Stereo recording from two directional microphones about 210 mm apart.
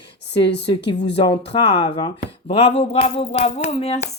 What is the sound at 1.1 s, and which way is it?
Speech, 25° left (ahead or behind).